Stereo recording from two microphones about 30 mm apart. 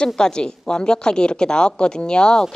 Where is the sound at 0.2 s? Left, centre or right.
Left.